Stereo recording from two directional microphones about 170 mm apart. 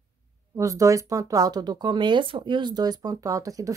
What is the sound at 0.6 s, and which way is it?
Speech, 20° right (ahead or behind).